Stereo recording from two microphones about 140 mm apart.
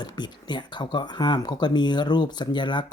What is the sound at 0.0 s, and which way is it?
Speech, 30° left (ahead or behind).